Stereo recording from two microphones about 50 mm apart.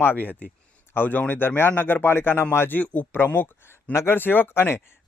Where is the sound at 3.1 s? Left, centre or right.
Left.